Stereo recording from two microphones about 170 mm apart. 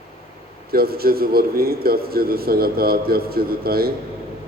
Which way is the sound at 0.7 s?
65° right (ahead or behind).